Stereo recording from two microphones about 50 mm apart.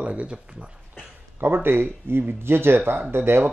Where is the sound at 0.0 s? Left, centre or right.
Right.